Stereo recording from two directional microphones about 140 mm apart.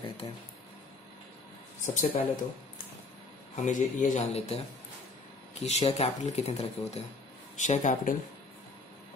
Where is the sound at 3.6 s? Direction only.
60° left (ahead or behind).